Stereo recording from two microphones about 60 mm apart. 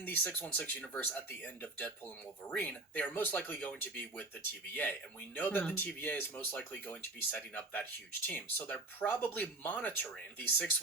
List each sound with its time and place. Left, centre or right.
0.0 s speech: left